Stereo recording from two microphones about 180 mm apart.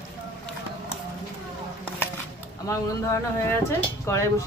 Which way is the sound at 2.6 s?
15° left (ahead or behind).